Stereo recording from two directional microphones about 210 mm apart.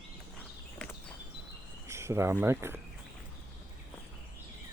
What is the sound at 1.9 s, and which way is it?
Speech, 15° right (ahead or behind).